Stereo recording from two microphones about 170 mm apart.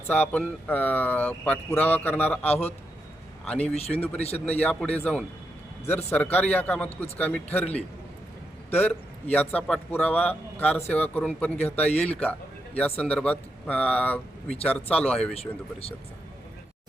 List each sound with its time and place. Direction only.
0.1 s a man's voice: 10° left (ahead or behind)
3.8 s speech: 35° left (ahead or behind)
4.4 s a man's voice: 10° left (ahead or behind)
15.4 s speech: 35° left (ahead or behind)